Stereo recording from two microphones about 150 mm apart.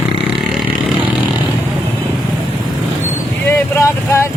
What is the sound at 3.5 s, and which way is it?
Vehicle, 15° left (ahead or behind).